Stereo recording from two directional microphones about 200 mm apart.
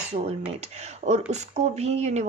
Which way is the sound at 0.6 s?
35° right (ahead or behind).